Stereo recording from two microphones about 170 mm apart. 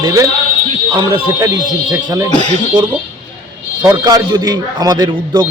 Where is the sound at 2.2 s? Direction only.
25° left (ahead or behind).